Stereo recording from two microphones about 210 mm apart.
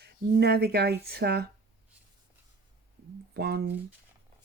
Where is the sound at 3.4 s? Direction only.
50° right (ahead or behind).